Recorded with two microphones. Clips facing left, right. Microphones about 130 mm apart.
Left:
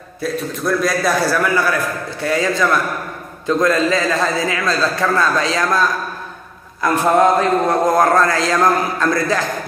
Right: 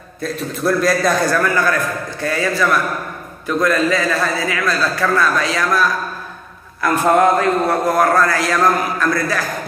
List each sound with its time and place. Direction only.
0.2 s a man's voice: centre (ahead or behind); by 5.9 s 25° left (ahead or behind)
7.2 s a man's voice: 20° left (ahead or behind)